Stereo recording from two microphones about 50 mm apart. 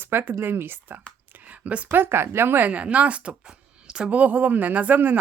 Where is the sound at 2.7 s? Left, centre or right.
Right.